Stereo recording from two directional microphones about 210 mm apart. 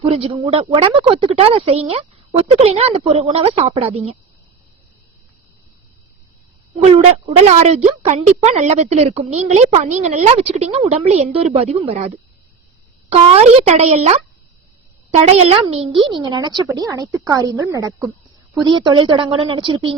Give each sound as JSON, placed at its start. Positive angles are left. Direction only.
{"t": 0.0, "sound": "a woman's voice", "side_deg": -30}
{"t": 6.9, "sound": "a woman's voice", "side_deg": -30}